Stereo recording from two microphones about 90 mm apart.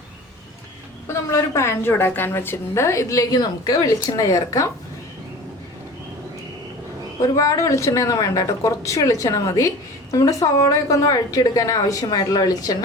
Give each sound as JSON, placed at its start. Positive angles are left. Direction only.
{"t": 1.0, "sound": "speech", "side_deg": 30}
{"t": 7.3, "sound": "speech", "side_deg": 35}